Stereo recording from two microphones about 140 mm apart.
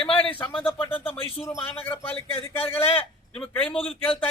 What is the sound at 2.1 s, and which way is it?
Speech, 40° left (ahead or behind).